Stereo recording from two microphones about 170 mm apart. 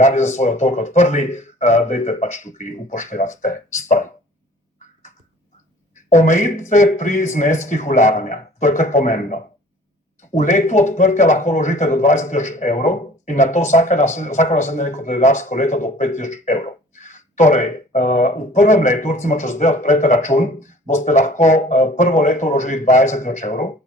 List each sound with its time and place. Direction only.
0.0 s speech: 45° left (ahead or behind)
6.1 s speech: 45° left (ahead or behind)